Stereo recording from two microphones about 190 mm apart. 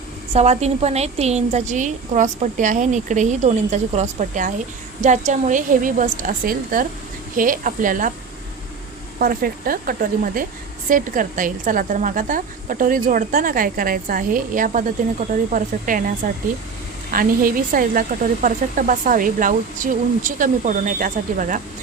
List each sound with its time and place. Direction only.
0.3 s a woman's voice: 35° right (ahead or behind)
9.1 s speech: 50° right (ahead or behind)